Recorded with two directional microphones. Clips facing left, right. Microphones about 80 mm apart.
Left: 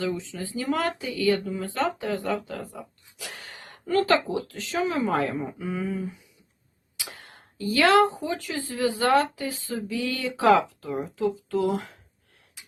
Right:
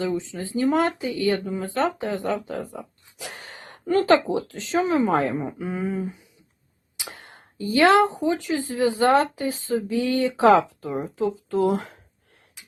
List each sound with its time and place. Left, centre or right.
0.0 s speech: right